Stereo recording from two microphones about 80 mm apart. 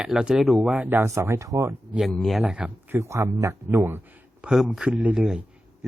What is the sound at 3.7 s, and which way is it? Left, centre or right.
Speech, right.